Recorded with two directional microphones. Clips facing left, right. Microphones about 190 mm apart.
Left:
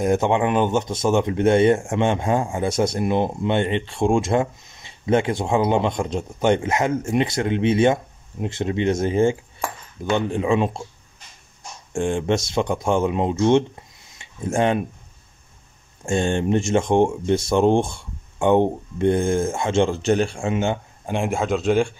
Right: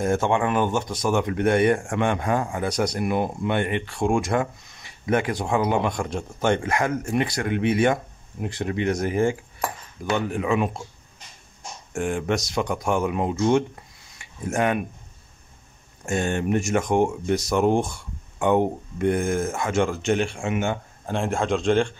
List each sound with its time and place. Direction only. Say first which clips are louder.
0.0 s speech: left 3 dB; 20° left (ahead or behind)
11.9 s speech: left 3 dB; 25° left (ahead or behind)
16.1 s speech: left 3 dB; 30° left (ahead or behind)
21.0 s speech: left 1 dB; 15° left (ahead or behind)